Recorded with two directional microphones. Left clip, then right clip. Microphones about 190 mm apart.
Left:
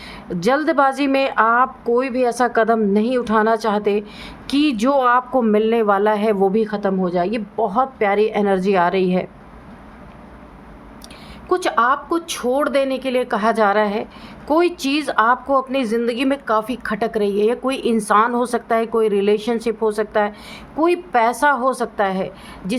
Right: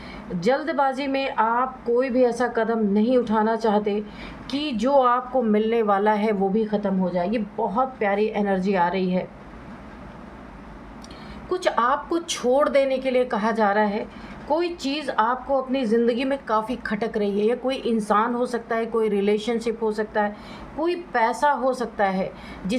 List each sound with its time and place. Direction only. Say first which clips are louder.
0.3 s speech: left 5 dB; 45° left (ahead or behind)
11.4 s a woman's voice: left 5 dB; 40° left (ahead or behind)